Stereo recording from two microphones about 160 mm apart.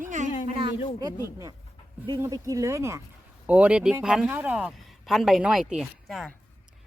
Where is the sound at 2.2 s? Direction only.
20° right (ahead or behind); by 6.3 s centre (ahead or behind).